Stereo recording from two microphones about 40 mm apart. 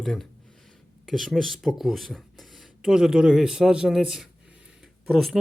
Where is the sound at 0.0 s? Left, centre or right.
Centre.